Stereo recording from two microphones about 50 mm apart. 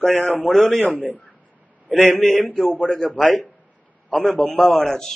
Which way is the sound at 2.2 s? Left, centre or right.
Centre.